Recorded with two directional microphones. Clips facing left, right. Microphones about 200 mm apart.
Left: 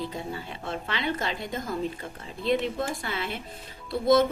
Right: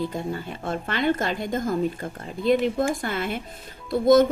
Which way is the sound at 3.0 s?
50° right (ahead or behind).